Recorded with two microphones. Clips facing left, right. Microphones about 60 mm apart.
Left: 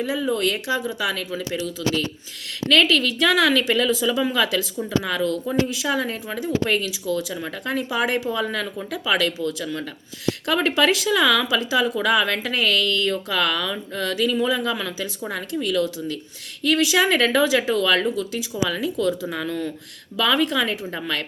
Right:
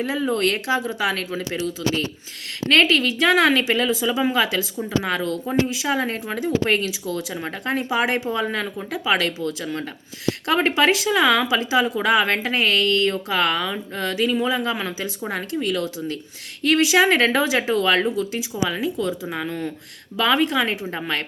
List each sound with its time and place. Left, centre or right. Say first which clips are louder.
0.0 s speech: right 1 dB; right
0.7 s speech: right 2 dB; right
2.8 s speech: right 1 dB; right
3.6 s speech: even; right
15.3 s speech: right 1 dB; right